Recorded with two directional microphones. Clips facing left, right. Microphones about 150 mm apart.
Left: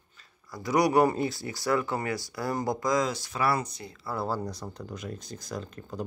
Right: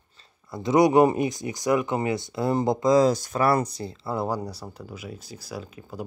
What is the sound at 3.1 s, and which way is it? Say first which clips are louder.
Speech: right 6 dB; 45° right (ahead or behind).